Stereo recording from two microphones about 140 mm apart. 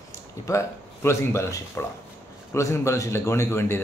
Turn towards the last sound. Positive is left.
turn(degrees=20)  # may be behind; listen again after turning